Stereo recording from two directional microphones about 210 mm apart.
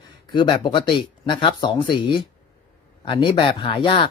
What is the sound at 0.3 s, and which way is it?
Speech, 20° left (ahead or behind).